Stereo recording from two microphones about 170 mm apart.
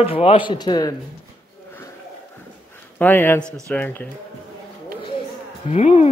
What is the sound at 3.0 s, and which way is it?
Speech, 10° left (ahead or behind).